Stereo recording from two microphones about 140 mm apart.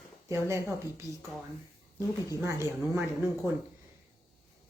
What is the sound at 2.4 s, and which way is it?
Speech, 20° right (ahead or behind).